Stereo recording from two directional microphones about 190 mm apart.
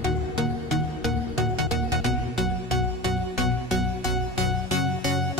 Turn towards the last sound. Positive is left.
turn(degrees=0)  # may be behind; listen again after turning